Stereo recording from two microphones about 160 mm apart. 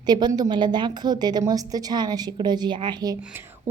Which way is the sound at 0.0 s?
25° right (ahead or behind).